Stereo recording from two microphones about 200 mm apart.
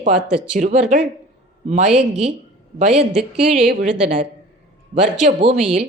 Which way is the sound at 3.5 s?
35° right (ahead or behind).